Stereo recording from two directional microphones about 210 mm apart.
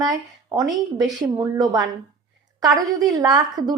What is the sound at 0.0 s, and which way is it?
A woman's voice, 15° right (ahead or behind).